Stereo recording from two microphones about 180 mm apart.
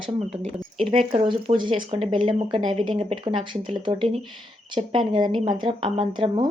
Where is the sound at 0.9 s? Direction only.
30° right (ahead or behind).